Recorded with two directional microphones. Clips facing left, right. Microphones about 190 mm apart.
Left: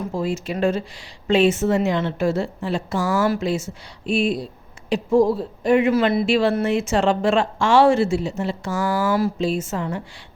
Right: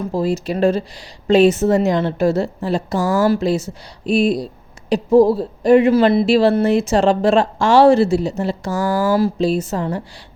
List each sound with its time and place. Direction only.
0.1 s speech: 35° right (ahead or behind)